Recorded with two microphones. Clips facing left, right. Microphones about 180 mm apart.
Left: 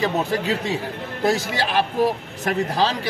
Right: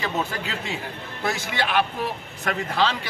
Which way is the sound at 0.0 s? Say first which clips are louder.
Left 6 dB; 35° left (ahead or behind).